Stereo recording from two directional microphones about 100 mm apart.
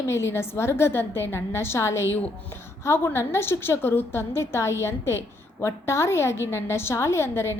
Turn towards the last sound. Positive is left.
turn(degrees=25)  # may be behind; listen again after turning